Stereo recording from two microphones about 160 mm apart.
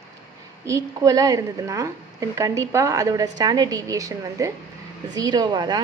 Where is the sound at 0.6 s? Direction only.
20° right (ahead or behind).